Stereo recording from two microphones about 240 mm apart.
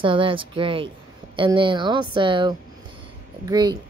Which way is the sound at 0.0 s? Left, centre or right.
Right.